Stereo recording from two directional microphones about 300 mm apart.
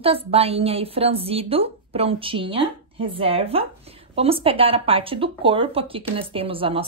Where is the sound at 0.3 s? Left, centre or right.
Centre.